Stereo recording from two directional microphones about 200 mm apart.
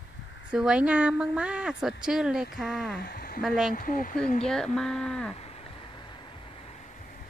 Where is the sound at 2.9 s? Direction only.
50° left (ahead or behind).